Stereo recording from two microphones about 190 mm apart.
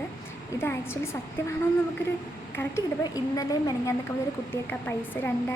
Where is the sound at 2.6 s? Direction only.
15° left (ahead or behind).